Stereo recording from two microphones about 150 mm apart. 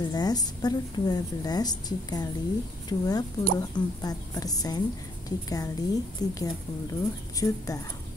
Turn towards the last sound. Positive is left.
turn(degrees=20)  # may be behind; listen again after turning